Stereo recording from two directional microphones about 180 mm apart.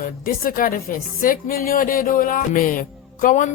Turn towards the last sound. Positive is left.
turn(degrees=45)  # may be behind; listen again after turning